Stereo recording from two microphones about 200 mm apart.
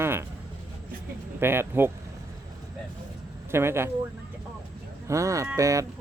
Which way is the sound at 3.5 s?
10° right (ahead or behind).